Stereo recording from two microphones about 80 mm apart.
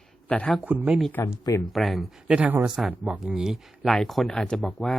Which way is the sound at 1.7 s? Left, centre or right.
Centre.